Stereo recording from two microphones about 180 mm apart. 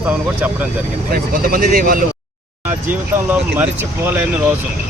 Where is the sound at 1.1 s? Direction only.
50° right (ahead or behind).